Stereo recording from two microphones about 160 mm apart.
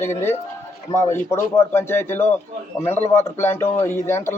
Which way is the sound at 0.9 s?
15° left (ahead or behind).